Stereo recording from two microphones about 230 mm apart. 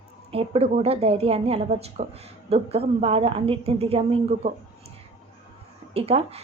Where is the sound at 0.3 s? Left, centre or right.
Right.